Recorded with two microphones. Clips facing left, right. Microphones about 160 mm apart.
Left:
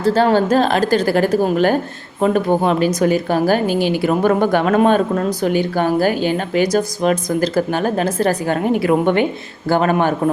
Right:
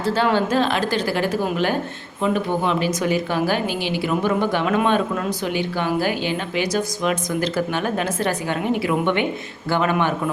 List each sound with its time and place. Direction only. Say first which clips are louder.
0.0 s a woman's voice: left 5 dB; 40° left (ahead or behind)